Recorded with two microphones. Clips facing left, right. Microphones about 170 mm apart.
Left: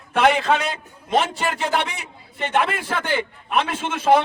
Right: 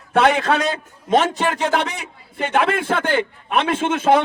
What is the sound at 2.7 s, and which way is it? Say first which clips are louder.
Speech: right 4 dB; 50° right (ahead or behind).